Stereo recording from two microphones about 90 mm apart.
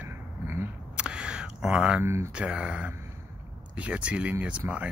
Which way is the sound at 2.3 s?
15° right (ahead or behind).